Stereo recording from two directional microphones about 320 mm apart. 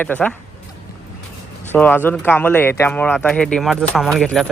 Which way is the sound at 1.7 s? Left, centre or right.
Centre.